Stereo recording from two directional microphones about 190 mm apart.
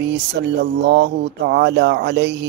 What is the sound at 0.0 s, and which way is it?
Speech, 65° right (ahead or behind).